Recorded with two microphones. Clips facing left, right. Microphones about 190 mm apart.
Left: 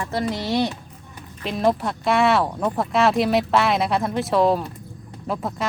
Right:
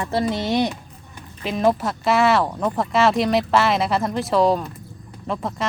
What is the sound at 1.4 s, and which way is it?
Speech, centre (ahead or behind).